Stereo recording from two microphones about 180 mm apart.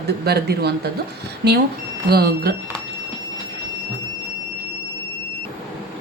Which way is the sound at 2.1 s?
60° right (ahead or behind).